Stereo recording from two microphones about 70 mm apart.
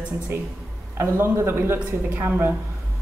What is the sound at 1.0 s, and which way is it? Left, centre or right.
A woman's voice, right.